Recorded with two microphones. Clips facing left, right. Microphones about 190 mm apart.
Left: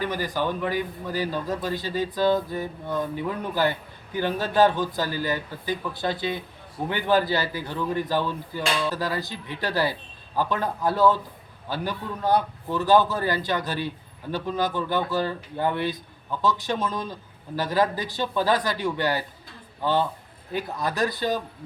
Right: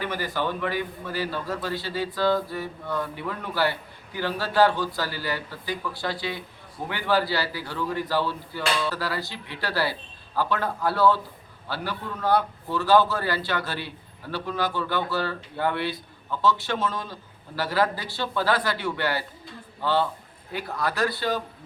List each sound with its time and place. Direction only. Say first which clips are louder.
0.0 s a man's voice: left 2 dB; 15° left (ahead or behind)